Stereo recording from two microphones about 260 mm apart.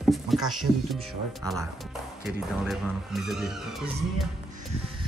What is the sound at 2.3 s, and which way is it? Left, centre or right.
Speech, centre.